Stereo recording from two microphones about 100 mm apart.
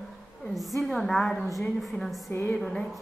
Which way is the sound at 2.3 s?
15° left (ahead or behind).